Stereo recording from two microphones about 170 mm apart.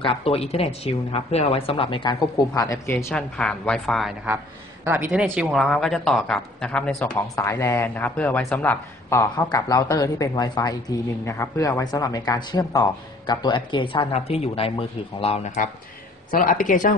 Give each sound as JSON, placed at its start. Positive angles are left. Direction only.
{"t": 0.0, "sound": "a woman's voice", "side_deg": 35}
{"t": 3.1, "sound": "speech", "side_deg": 5}
{"t": 4.8, "sound": "speech", "side_deg": -10}
{"t": 5.2, "sound": "speech", "side_deg": 0}
{"t": 8.6, "sound": "speech", "side_deg": 15}
{"t": 16.3, "sound": "speech", "side_deg": 55}